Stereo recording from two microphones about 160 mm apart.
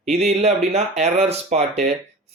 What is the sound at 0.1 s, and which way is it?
Speech, 40° right (ahead or behind).